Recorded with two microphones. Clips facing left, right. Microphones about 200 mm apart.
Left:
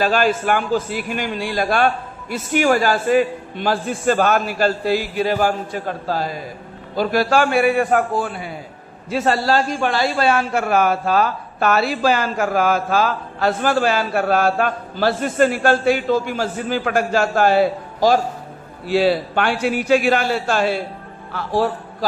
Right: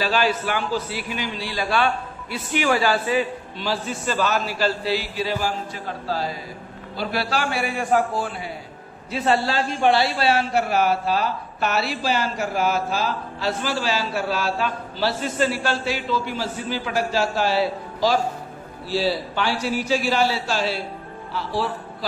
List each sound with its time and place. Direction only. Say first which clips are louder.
0.0 s a man's voice: left 4 dB; 50° left (ahead or behind)
9.1 s a man's voice: left 4 dB; 40° left (ahead or behind)
21.3 s music: left 6 dB; 50° left (ahead or behind)